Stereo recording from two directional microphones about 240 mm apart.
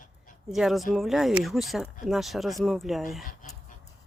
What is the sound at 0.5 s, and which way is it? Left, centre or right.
Speech, centre.